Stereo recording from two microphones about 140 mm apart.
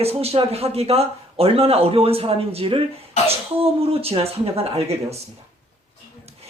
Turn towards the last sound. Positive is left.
turn(degrees=-45)  # may be behind; listen again after turning